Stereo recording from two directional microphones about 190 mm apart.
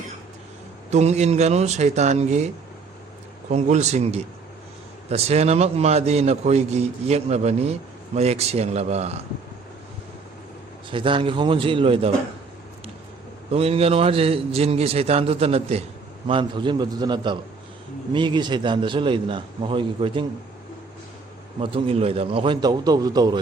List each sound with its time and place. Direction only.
0.9 s a man's voice: 35° right (ahead or behind)
3.5 s a man's voice: 35° right (ahead or behind)
10.9 s a man's voice: 25° right (ahead or behind)
13.5 s a man's voice: 30° right (ahead or behind)
21.6 s a man's voice: 30° right (ahead or behind)